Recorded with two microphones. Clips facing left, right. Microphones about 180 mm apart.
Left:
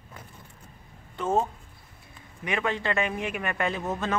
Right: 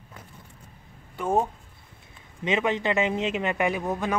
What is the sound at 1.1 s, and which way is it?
Speech, 15° right (ahead or behind).